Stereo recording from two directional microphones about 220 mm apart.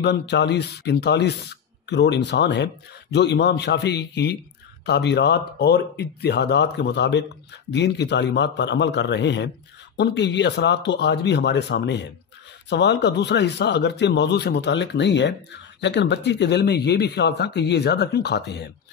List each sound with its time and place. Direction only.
0.0 s speech: 50° left (ahead or behind)